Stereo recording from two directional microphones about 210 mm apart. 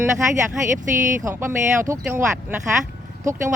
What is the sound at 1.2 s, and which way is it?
Speech, 15° right (ahead or behind).